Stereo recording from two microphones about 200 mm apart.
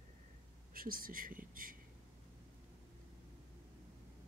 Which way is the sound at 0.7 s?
45° right (ahead or behind).